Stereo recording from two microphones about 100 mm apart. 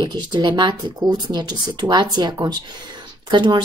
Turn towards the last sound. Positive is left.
turn(degrees=-50)  # may be behind; listen again after turning